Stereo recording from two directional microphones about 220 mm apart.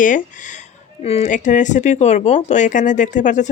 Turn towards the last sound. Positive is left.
turn(degrees=35)  # may be behind; listen again after turning